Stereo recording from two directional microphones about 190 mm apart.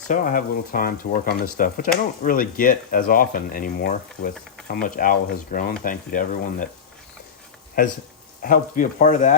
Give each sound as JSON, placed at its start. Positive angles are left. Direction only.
{"t": 0.1, "sound": "speech", "side_deg": 45}
{"t": 7.8, "sound": "speech", "side_deg": 45}